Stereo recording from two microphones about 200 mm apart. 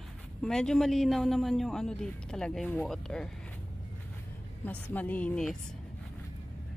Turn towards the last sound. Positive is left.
turn(degrees=5)  # may be behind; listen again after turning